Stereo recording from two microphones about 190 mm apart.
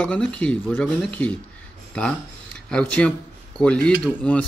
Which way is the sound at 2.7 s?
5° left (ahead or behind).